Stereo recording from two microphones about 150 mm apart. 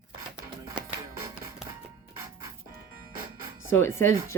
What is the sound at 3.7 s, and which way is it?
Speech, 15° left (ahead or behind).